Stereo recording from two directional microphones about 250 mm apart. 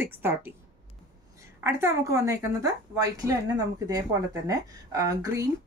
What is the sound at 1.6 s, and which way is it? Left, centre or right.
A woman's voice, centre.